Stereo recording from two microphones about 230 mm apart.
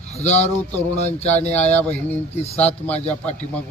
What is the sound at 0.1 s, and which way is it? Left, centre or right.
A man's voice, left.